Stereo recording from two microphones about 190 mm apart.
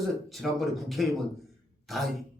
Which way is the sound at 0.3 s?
Centre (ahead or behind).